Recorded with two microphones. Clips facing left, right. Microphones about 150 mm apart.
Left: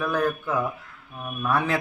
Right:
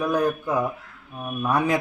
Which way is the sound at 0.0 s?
15° right (ahead or behind).